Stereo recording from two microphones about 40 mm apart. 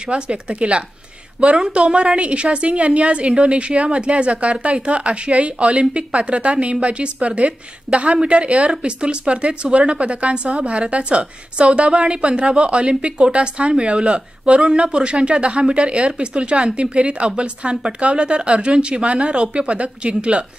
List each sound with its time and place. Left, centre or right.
0.1 s a woman's voice: right